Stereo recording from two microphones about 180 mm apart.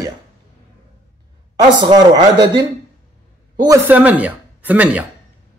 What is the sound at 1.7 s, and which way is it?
Speech, 20° right (ahead or behind).